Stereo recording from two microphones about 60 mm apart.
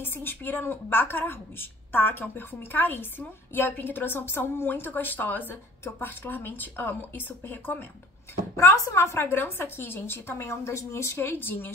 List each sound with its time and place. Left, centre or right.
0.0 s a woman's voice: left
8.5 s speech: left
9.2 s a woman's voice: left
11.2 s a woman's voice: left